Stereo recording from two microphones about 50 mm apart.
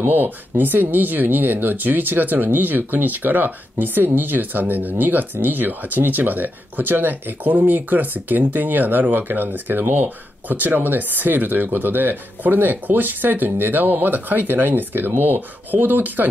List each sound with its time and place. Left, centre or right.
0.0 s speech: right